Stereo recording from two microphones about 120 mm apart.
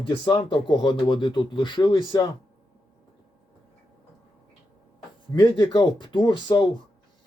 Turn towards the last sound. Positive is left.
turn(degrees=40)  # may be behind; listen again after turning